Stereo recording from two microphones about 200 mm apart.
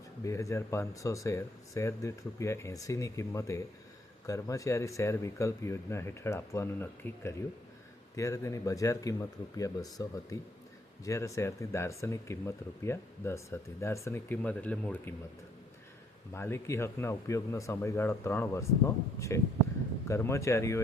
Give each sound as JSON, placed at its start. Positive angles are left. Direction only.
{"t": 0.3, "sound": "speech", "side_deg": 15}
{"t": 16.3, "sound": "speech", "side_deg": 10}